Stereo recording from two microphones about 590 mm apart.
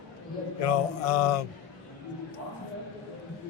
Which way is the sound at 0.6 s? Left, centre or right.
Left.